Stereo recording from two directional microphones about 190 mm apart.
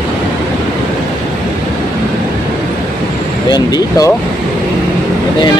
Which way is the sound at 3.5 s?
20° left (ahead or behind).